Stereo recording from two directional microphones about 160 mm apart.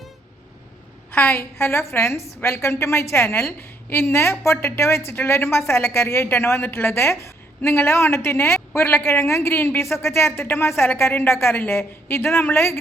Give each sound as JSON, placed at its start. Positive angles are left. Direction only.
{"t": 1.1, "sound": "a woman's voice", "side_deg": 10}